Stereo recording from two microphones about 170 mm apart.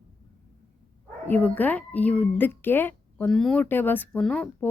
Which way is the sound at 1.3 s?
10° left (ahead or behind).